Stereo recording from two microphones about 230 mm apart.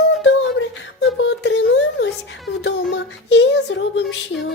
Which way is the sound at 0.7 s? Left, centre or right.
Left.